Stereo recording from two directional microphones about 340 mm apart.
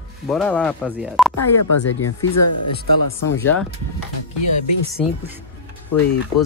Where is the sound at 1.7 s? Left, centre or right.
Left.